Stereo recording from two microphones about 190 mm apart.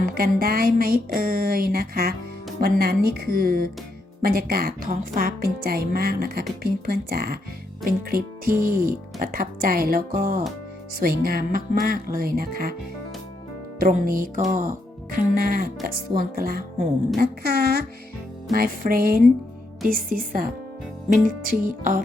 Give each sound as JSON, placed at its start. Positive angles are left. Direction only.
{"t": 0.0, "sound": "a woman's voice", "side_deg": -50}
{"t": 13.7, "sound": "a woman's voice", "side_deg": -50}